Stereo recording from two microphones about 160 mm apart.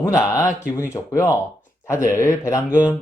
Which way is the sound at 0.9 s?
15° left (ahead or behind).